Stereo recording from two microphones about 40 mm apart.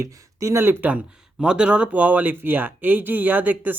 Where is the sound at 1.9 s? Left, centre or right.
Right.